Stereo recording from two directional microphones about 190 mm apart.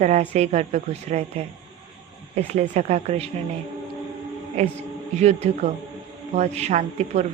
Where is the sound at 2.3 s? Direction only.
35° right (ahead or behind).